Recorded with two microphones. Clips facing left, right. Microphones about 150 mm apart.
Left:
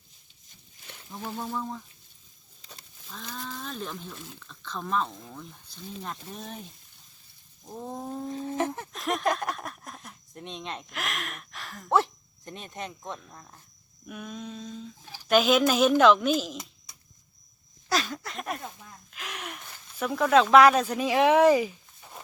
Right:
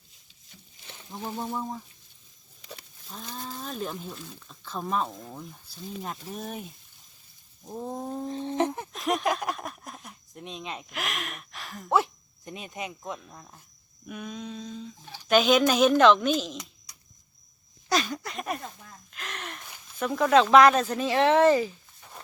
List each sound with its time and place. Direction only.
1.1 s speech: 15° right (ahead or behind)
3.1 s speech: 25° right (ahead or behind)
3.5 s a sound: 35° right (ahead or behind)
4.6 s speech: 40° right (ahead or behind)
5.6 s speech: 10° right (ahead or behind)
7.6 s speech: 5° right (ahead or behind)
8.3 s speech: 25° right (ahead or behind)
8.9 s speech: centre (ahead or behind)
19.1 s a sound: 5° left (ahead or behind)
19.9 s speech: 5° left (ahead or behind)